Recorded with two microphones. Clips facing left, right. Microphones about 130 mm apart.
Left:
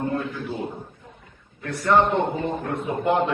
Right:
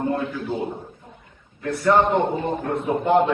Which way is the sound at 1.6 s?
Centre (ahead or behind).